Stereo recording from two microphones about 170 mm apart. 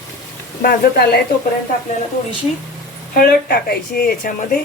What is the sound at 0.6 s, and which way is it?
Speech, 65° left (ahead or behind).